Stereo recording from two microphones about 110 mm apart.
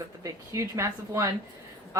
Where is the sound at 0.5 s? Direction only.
25° right (ahead or behind).